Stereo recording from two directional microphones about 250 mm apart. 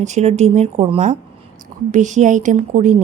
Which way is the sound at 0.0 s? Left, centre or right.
Right.